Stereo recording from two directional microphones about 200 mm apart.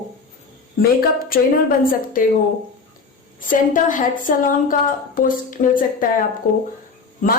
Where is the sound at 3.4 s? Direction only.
40° left (ahead or behind).